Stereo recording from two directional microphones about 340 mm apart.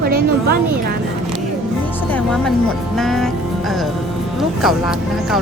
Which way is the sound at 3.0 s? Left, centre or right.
Centre.